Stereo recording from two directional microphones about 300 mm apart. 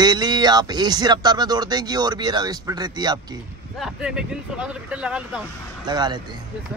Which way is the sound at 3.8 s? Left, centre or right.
Centre.